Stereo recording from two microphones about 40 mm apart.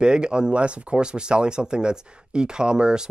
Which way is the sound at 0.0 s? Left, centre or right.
Right.